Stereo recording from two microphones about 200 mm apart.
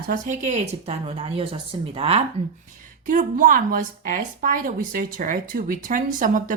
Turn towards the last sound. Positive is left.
turn(degrees=-40)  # may be behind; listen again after turning